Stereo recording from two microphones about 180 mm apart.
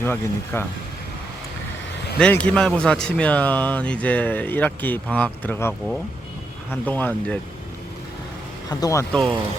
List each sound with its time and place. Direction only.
0.0 s speech: 10° left (ahead or behind)
2.1 s speech: 5° left (ahead or behind)
8.7 s speech: 20° left (ahead or behind)